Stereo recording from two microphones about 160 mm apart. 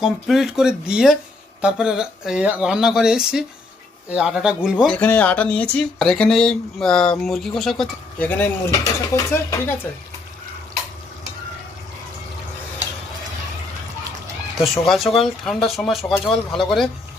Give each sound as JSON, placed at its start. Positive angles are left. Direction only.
{"t": 0.0, "sound": "speech", "side_deg": -5}
{"t": 4.9, "sound": "speech", "side_deg": 10}
{"t": 14.6, "sound": "speech", "side_deg": 0}